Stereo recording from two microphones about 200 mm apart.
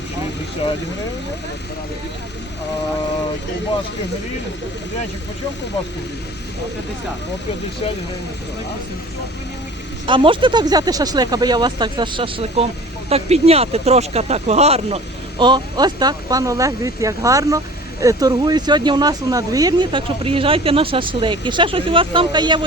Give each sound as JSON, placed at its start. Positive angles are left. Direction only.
{"t": 10.1, "sound": "speech", "side_deg": -25}